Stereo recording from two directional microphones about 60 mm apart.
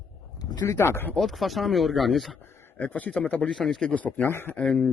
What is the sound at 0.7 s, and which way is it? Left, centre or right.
Speech, left.